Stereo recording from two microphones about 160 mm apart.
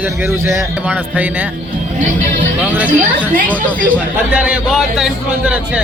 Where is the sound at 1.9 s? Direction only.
50° right (ahead or behind).